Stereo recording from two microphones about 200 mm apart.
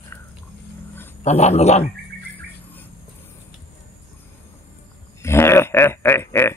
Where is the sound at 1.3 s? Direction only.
35° left (ahead or behind).